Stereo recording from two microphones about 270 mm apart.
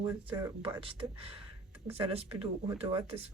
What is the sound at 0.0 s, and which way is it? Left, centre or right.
Speech, centre.